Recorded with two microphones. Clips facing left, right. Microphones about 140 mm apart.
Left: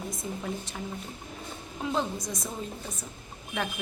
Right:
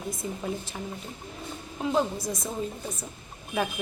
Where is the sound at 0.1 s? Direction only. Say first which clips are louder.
Right 2 dB; centre (ahead or behind).